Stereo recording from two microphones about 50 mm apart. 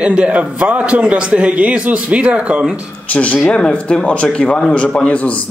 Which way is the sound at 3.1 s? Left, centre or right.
Left.